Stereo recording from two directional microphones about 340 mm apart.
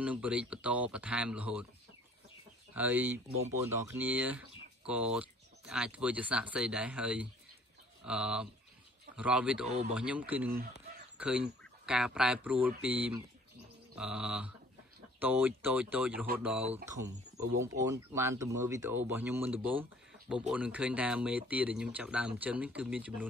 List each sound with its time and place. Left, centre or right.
0.0 s speech: centre
2.7 s speech: centre
16.6 s speech: centre